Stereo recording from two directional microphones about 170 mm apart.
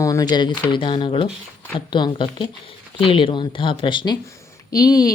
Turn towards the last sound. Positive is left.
turn(degrees=20)  # may be behind; listen again after turning